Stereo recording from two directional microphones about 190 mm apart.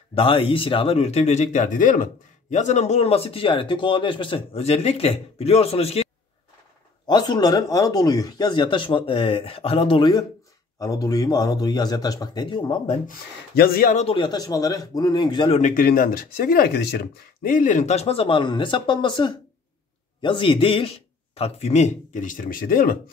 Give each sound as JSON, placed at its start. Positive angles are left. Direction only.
{"t": 0.1, "sound": "speech", "side_deg": 30}
{"t": 7.1, "sound": "speech", "side_deg": 20}
{"t": 13.6, "sound": "speech", "side_deg": 50}
{"t": 14.0, "sound": "speech", "side_deg": 25}
{"t": 15.6, "sound": "speech", "side_deg": 45}